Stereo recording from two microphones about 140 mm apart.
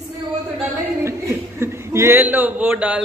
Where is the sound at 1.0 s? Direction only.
20° right (ahead or behind).